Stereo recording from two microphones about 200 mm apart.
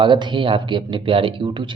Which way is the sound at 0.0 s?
25° right (ahead or behind).